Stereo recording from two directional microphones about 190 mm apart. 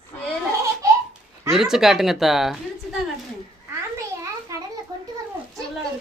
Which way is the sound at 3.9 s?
15° right (ahead or behind).